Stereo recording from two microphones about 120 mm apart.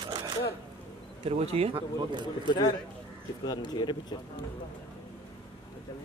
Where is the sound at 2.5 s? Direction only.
40° left (ahead or behind).